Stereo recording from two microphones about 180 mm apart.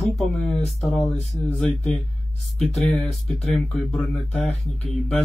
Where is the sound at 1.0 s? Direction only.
40° left (ahead or behind).